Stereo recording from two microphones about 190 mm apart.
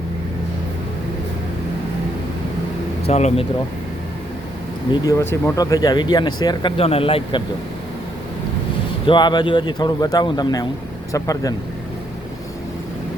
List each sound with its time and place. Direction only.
3.1 s speech: 35° left (ahead or behind)
4.9 s speech: 15° left (ahead or behind)
9.0 s speech: 25° left (ahead or behind)